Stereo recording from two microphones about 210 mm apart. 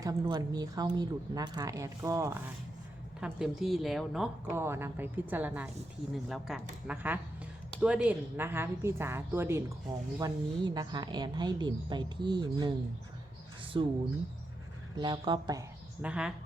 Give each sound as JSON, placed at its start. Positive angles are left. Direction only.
{"t": 0.0, "sound": "a woman's voice", "side_deg": -15}
{"t": 3.2, "sound": "a woman's voice", "side_deg": -5}
{"t": 4.5, "sound": "a woman's voice", "side_deg": -10}
{"t": 13.7, "sound": "a woman's voice", "side_deg": -25}
{"t": 14.9, "sound": "a woman's voice", "side_deg": -20}
{"t": 16.0, "sound": "a woman's voice", "side_deg": -5}